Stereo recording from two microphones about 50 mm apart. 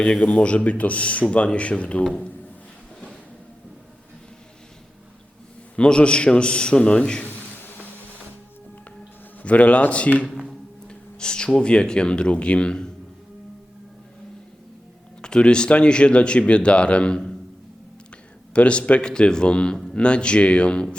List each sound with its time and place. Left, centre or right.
0.2 s speech: left
5.7 s speech: left
9.4 s speech: left
15.2 s speech: centre
18.5 s speech: left